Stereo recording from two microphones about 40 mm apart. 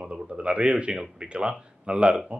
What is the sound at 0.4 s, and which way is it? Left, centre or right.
Speech, right.